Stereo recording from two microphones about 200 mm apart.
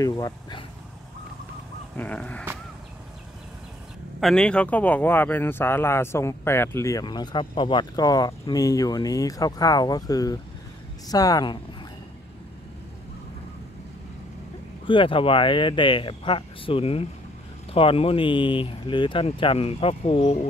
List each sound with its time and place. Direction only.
0.0 s speech: 20° left (ahead or behind)
2.0 s speech: 5° left (ahead or behind)
4.2 s speech: 5° left (ahead or behind); by 11.6 s 20° left (ahead or behind)
14.9 s speech: 25° left (ahead or behind)